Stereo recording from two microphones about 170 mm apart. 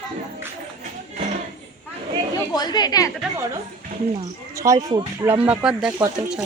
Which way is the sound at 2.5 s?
25° left (ahead or behind).